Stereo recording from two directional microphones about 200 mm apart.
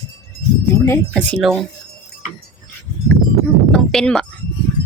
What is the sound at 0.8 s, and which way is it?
Speech, 10° left (ahead or behind).